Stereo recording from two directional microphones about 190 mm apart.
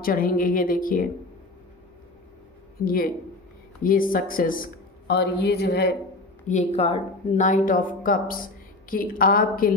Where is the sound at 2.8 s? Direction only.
50° left (ahead or behind).